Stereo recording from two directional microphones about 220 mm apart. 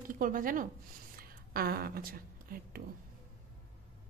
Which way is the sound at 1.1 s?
40° right (ahead or behind).